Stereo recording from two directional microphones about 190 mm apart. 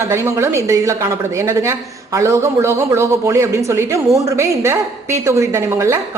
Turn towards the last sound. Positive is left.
turn(degrees=-15)  # may be behind; listen again after turning